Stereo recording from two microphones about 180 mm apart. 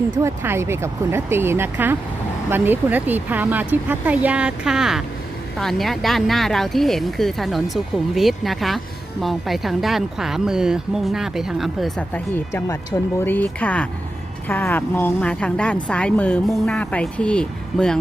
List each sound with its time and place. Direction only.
0.2 s a woman's voice: 15° right (ahead or behind); by 17.9 s 5° left (ahead or behind)